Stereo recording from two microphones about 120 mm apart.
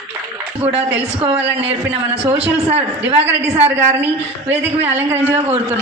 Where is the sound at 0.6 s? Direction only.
15° right (ahead or behind).